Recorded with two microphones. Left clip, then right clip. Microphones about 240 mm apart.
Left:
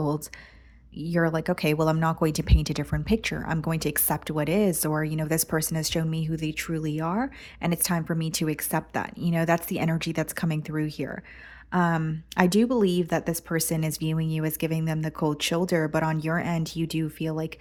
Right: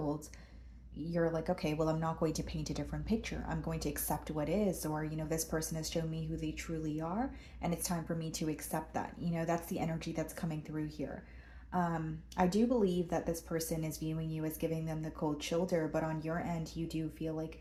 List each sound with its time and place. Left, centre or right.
0.9 s speech: left